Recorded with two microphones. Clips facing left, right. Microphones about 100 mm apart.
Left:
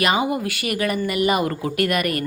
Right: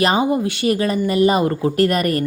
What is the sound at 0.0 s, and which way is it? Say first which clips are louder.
Speech: right 4 dB; 30° right (ahead or behind).